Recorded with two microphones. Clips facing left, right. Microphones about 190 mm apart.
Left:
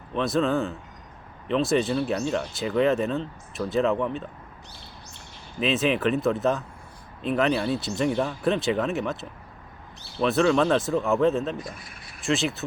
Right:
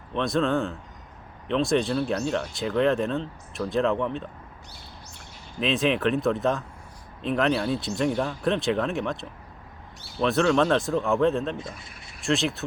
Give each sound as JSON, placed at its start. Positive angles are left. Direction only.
{"t": 0.1, "sound": "speech", "side_deg": 0}
{"t": 5.5, "sound": "speech", "side_deg": 0}
{"t": 11.5, "sound": "speech", "side_deg": -25}
{"t": 12.2, "sound": "speech", "side_deg": 0}